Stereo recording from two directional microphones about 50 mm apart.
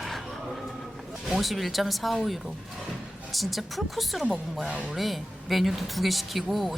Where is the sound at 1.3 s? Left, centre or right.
Centre.